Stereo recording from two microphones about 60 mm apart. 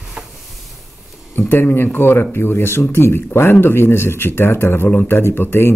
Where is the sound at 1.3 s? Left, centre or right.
Left.